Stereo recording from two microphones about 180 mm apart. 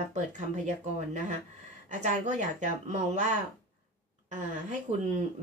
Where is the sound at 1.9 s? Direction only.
40° right (ahead or behind).